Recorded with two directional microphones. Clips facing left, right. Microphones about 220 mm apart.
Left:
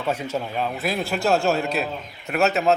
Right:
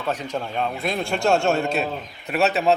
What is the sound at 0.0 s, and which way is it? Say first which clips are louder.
A man's voice: left 1 dB; 10° left (ahead or behind).